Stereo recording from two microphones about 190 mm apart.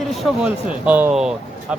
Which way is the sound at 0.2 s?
5° right (ahead or behind).